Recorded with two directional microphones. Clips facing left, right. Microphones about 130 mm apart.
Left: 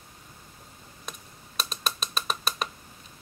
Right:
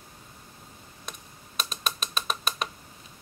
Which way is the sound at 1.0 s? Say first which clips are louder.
Left 1 dB; centre (ahead or behind).